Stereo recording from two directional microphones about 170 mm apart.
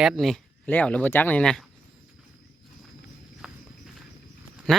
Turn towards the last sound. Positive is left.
turn(degrees=5)  # may be behind; listen again after turning